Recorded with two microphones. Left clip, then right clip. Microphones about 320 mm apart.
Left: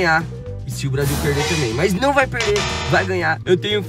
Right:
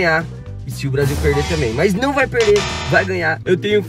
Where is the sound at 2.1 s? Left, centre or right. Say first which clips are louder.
Right 3 dB; centre.